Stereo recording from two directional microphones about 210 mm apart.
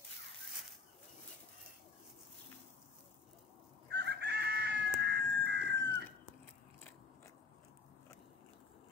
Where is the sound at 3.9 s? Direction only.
55° right (ahead or behind).